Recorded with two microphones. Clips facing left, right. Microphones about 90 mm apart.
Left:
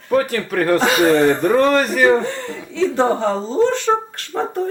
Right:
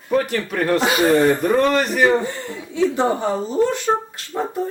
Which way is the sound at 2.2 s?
65° left (ahead or behind).